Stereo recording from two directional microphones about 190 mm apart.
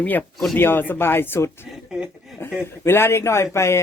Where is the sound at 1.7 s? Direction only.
Centre (ahead or behind).